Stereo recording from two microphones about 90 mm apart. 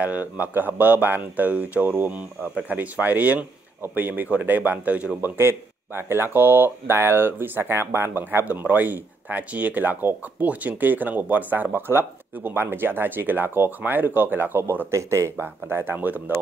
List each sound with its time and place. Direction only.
0.0 s speech: 15° right (ahead or behind)
5.4 s speech: 25° right (ahead or behind)
15.3 s speech: 25° right (ahead or behind)